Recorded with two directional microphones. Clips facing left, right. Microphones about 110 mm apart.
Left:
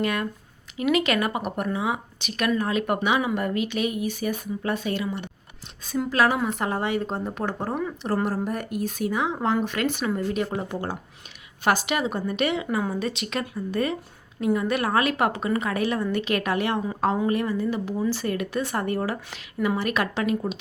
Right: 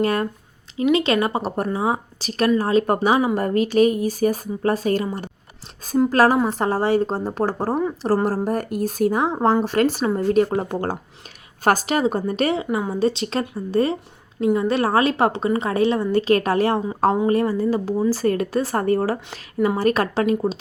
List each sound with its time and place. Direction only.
0.0 s speech: 35° right (ahead or behind)
12.7 s a woman's voice: 25° right (ahead or behind)